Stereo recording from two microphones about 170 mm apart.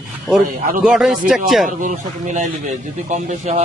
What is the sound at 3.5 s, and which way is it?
Speech, 45° right (ahead or behind).